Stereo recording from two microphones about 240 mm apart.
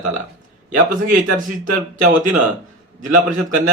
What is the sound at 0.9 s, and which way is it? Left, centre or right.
A man's voice, right.